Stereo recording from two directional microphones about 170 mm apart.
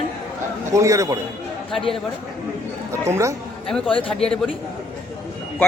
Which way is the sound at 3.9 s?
30° left (ahead or behind).